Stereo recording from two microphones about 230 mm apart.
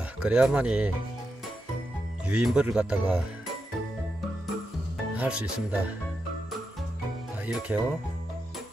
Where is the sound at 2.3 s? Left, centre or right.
Centre.